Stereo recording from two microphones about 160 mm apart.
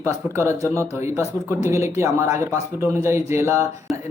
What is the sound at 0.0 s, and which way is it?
Speech, 20° right (ahead or behind).